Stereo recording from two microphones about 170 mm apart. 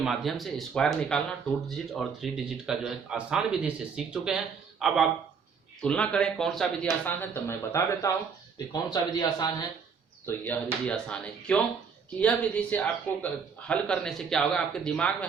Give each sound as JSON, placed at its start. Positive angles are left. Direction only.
{"t": 0.0, "sound": "speech", "side_deg": 0}
{"t": 10.2, "sound": "speech", "side_deg": 10}